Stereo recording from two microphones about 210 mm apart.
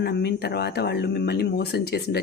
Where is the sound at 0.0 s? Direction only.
50° left (ahead or behind).